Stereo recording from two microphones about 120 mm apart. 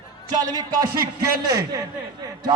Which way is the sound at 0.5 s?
35° right (ahead or behind).